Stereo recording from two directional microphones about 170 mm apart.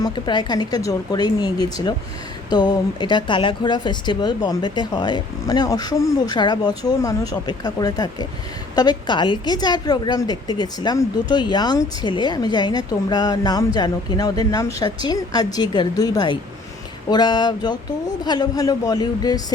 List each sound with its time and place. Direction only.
0.0 s speech: 25° left (ahead or behind)